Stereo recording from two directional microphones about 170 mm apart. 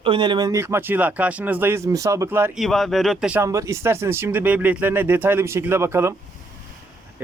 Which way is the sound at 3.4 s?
15° right (ahead or behind).